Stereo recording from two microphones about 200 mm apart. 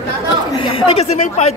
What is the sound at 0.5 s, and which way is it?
Speech, 30° left (ahead or behind).